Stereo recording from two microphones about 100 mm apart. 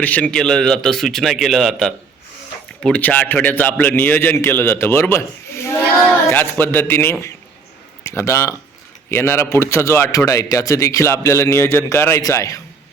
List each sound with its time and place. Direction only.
0.0 s a man's voice: 15° left (ahead or behind)
2.8 s a man's voice: 15° left (ahead or behind)
6.2 s a man's voice: 20° left (ahead or behind)